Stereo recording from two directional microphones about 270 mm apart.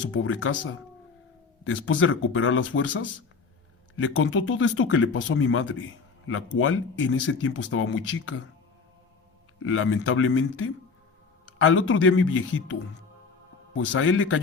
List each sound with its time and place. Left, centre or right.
0.0 s speech: left
1.6 s speech: left
9.6 s speech: left
13.7 s speech: left